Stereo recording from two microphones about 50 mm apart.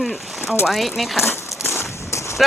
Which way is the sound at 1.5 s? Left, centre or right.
Centre.